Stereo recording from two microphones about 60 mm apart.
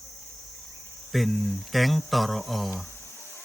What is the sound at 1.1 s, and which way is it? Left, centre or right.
Speech, centre.